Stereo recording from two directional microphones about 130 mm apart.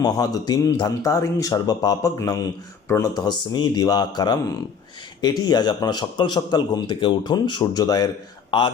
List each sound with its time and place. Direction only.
0.0 s a man's voice: 30° left (ahead or behind)